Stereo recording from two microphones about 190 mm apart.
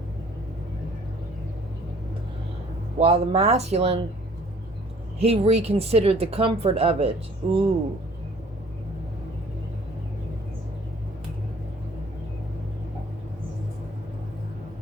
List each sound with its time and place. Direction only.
3.0 s speech: 35° right (ahead or behind)
5.2 s speech: 35° right (ahead or behind)